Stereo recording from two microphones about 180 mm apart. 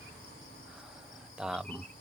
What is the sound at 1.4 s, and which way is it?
Cricket, centre (ahead or behind).